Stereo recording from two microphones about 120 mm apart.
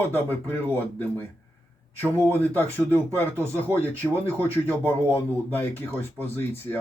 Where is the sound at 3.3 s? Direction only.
20° right (ahead or behind).